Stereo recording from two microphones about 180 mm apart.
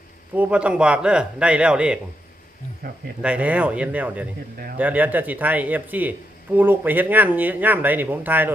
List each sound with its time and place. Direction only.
0.3 s speech: 5° right (ahead or behind)
2.8 s speech: 55° right (ahead or behind)
3.2 s speech: 5° right (ahead or behind)